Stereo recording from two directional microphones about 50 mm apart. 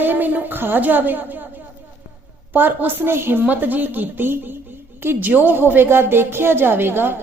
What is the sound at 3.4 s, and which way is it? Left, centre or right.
A woman's voice, right.